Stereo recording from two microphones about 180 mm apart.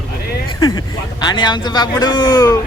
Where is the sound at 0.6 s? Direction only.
25° left (ahead or behind).